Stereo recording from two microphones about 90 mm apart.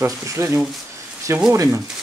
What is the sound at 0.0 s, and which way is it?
Speech, 35° right (ahead or behind).